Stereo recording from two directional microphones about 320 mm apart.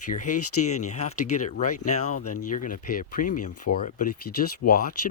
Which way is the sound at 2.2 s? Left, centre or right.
Left.